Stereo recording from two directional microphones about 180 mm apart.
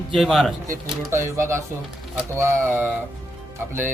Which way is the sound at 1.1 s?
15° right (ahead or behind).